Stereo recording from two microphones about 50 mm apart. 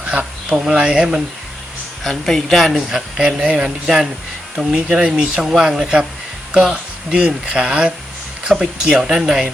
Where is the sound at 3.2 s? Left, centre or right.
Centre.